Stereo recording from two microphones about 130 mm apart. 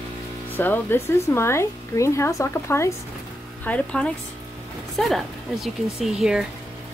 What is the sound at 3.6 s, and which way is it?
Speech, 10° left (ahead or behind).